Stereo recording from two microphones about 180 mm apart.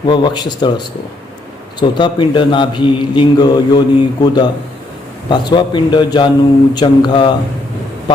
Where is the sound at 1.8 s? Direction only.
25° left (ahead or behind).